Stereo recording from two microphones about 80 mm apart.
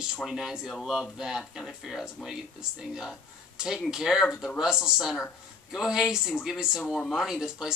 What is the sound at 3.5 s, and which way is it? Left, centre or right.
Speech, centre.